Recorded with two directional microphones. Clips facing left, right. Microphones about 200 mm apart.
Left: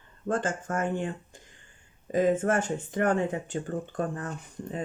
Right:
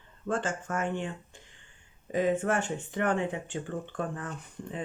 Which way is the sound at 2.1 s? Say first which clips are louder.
Left 3 dB; 45° left (ahead or behind).